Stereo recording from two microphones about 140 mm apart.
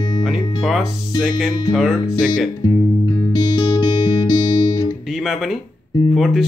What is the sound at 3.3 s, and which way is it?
Music, 30° left (ahead or behind).